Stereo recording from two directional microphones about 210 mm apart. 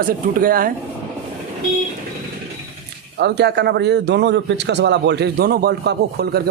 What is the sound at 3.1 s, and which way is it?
A man's voice, 55° right (ahead or behind).